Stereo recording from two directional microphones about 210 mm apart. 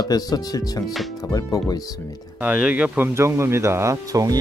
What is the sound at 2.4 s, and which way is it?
Speech, 5° right (ahead or behind).